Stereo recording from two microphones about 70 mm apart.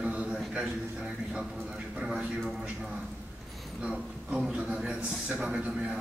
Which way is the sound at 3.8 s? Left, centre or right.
Centre.